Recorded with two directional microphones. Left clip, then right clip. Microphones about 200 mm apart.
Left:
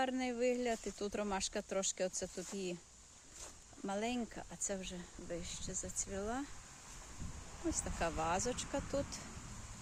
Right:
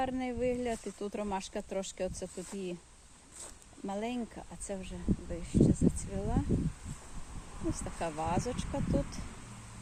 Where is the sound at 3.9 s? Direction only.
5° left (ahead or behind).